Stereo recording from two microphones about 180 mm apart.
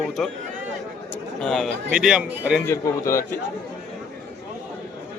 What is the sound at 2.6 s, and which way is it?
Speech, 15° left (ahead or behind).